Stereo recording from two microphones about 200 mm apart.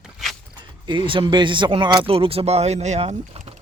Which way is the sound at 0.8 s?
25° right (ahead or behind).